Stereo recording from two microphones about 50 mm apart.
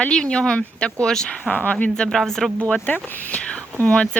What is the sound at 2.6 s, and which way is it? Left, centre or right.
Speech, left.